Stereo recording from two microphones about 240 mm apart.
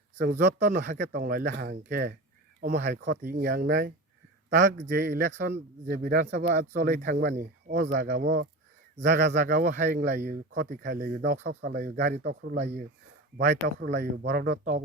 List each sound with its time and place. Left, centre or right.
0.2 s speech: right
9.4 s speech: right
10.0 s speech: right